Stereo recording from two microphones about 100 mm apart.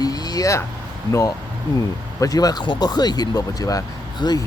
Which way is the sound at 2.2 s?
40° left (ahead or behind).